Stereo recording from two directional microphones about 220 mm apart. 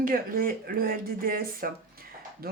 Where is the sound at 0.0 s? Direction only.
40° right (ahead or behind).